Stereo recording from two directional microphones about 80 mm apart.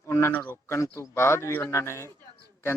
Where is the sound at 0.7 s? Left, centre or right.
Left.